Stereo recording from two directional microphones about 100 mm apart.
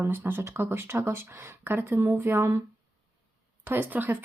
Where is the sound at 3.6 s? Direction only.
20° right (ahead or behind).